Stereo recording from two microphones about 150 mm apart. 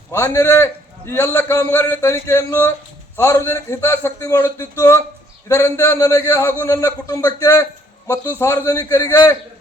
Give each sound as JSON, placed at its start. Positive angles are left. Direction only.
{"t": 0.1, "sound": "a man's voice", "side_deg": 15}